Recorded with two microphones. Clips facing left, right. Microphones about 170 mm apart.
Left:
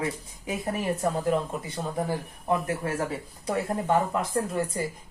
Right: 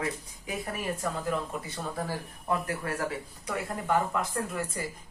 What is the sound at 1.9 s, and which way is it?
Speech, 20° left (ahead or behind).